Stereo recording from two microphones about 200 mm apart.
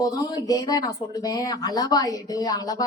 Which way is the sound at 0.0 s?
20° left (ahead or behind).